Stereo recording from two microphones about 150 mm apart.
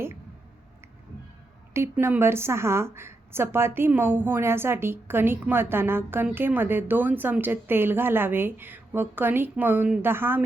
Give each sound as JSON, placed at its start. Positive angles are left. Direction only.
{"t": 1.7, "sound": "a woman's voice", "side_deg": -15}